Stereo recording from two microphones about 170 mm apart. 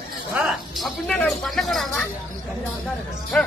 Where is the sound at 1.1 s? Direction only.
5° left (ahead or behind).